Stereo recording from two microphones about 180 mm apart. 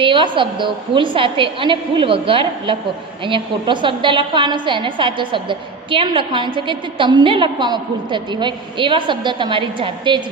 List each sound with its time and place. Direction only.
0.0 s a woman's voice: 30° right (ahead or behind)